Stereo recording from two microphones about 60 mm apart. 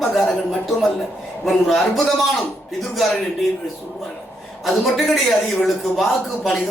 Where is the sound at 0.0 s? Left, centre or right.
Centre.